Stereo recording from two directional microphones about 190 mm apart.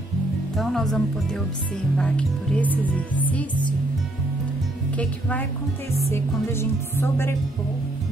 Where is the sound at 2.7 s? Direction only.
10° right (ahead or behind).